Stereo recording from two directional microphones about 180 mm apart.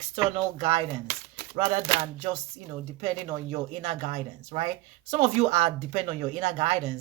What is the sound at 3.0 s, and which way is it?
Speech, 35° right (ahead or behind).